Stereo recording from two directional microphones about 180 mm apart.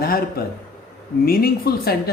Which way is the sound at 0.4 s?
55° left (ahead or behind).